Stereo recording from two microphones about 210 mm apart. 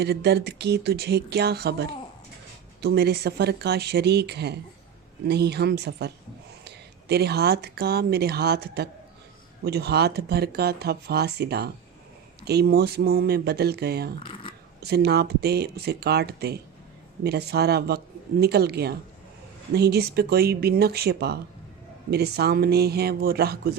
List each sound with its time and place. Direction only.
0.0 s speech: 50° right (ahead or behind)
14.3 s shuffling cards: 20° left (ahead or behind)
14.8 s speech: 50° right (ahead or behind)